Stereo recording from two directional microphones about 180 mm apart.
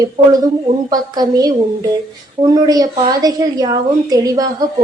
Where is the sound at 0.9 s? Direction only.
20° right (ahead or behind).